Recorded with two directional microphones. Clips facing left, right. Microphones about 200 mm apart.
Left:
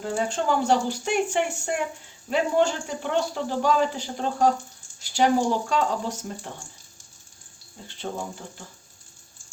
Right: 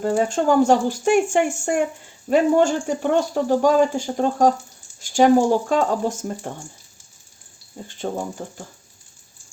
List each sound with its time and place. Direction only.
0.0 s speech: 50° right (ahead or behind)
8.0 s speech: 50° right (ahead or behind)